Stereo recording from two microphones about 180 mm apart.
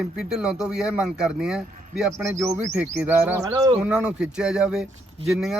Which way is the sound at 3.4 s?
20° right (ahead or behind).